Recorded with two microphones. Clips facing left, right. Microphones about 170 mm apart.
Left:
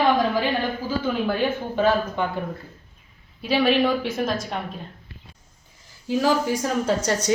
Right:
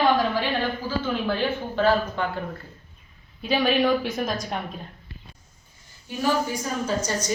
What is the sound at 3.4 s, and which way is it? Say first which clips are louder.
A woman's voice: left 2 dB; 5° left (ahead or behind).